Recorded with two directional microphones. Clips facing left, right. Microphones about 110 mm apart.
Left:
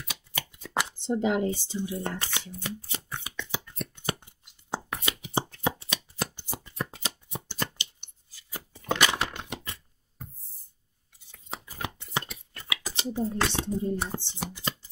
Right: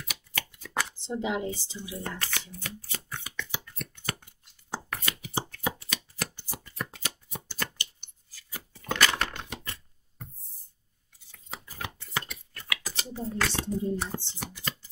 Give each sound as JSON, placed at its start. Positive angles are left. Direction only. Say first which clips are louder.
{"t": 0.3, "sound": "shuffling cards", "louder": "left 3 dB", "side_deg": 25}
{"t": 1.2, "sound": "speech", "louder": "left 4 dB", "side_deg": 50}
{"t": 1.5, "sound": "shuffling cards", "louder": "left 6 dB", "side_deg": 20}
{"t": 10.2, "sound": "a sound", "louder": "left 1 dB", "side_deg": 0}
{"t": 11.3, "sound": "scissors", "louder": "left 2 dB", "side_deg": 20}